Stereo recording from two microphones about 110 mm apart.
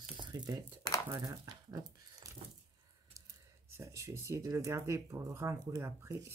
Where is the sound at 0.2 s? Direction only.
35° right (ahead or behind).